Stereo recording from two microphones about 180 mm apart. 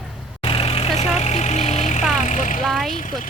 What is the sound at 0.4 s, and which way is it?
Vehicle, 30° left (ahead or behind).